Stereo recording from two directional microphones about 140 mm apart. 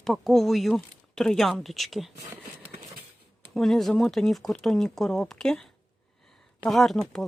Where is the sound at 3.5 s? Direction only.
Centre (ahead or behind).